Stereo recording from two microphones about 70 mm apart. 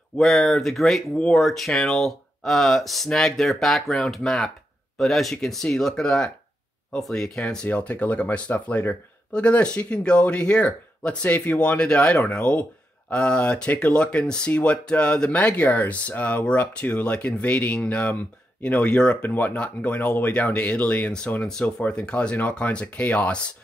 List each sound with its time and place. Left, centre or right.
0.2 s speech: centre
19.2 s speech: left